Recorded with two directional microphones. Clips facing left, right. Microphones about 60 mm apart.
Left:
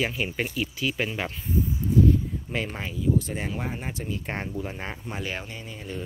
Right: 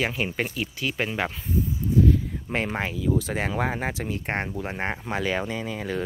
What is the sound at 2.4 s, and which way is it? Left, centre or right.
Speech, right.